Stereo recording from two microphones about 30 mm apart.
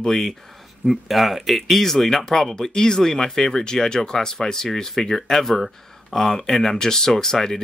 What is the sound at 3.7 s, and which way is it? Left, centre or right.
Speech, left.